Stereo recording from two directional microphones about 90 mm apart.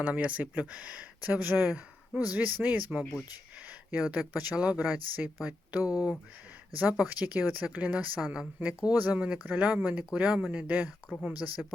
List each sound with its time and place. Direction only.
0.0 s speech: 15° right (ahead or behind)